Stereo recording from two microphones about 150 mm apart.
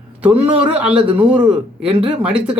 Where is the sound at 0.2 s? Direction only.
10° right (ahead or behind).